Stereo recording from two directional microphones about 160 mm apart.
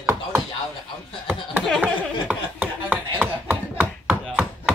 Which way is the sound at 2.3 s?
10° right (ahead or behind).